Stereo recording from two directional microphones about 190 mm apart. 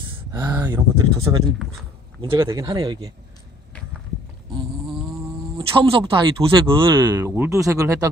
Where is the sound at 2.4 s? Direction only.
15° right (ahead or behind).